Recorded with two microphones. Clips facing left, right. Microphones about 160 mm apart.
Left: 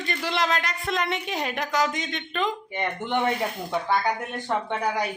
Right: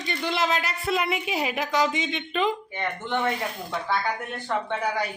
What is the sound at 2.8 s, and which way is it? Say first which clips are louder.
Speech: left 2 dB; 15° left (ahead or behind).